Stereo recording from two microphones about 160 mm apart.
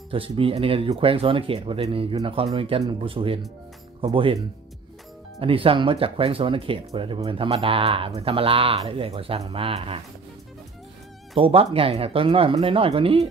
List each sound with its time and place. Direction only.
0.1 s speech: 35° right (ahead or behind)
5.4 s speech: 35° right (ahead or behind)
11.3 s speech: 35° right (ahead or behind)